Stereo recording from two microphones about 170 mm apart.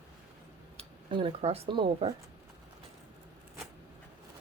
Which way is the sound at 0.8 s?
35° right (ahead or behind).